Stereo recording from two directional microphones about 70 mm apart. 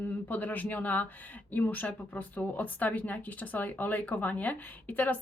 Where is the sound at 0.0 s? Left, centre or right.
Left.